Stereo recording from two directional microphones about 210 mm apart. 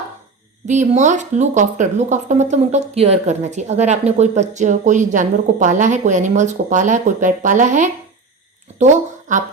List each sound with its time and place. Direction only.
0.7 s speech: 35° right (ahead or behind)